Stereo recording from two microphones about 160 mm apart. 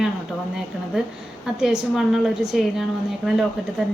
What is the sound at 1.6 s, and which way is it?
A woman's voice, 5° right (ahead or behind).